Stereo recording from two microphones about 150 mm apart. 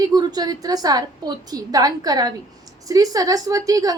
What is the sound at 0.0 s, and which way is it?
A woman's voice, 25° right (ahead or behind).